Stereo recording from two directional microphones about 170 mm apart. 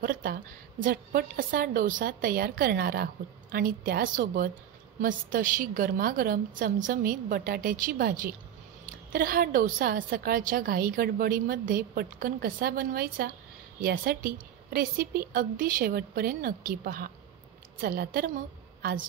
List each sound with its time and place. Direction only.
0.0 s a woman's voice: 60° right (ahead or behind)